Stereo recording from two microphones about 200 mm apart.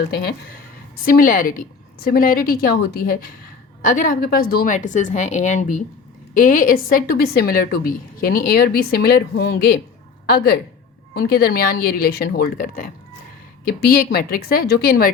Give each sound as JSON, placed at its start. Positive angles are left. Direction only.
{"t": 1.0, "sound": "a woman's voice", "side_deg": 45}